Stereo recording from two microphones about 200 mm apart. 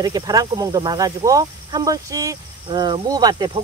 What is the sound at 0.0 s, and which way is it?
Speech, 20° right (ahead or behind).